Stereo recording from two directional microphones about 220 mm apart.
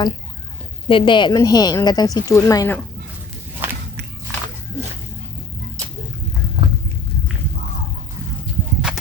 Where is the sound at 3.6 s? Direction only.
10° right (ahead or behind).